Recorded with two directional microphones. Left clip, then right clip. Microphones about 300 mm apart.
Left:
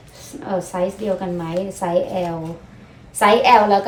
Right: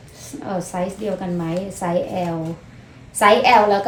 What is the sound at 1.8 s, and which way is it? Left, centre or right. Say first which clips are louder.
Speech: left 1 dB; centre.